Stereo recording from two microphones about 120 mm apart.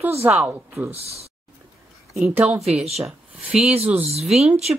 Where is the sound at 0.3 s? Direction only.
Centre (ahead or behind).